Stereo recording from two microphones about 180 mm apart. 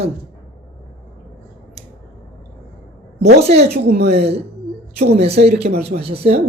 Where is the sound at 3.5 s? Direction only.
65° right (ahead or behind).